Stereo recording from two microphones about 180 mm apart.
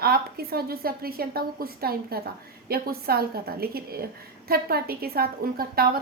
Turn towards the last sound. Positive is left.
turn(degrees=-55)  # may be behind; listen again after turning